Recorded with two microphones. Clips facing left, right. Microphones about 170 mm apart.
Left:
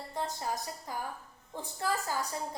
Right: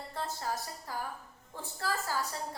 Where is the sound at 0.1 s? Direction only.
15° left (ahead or behind).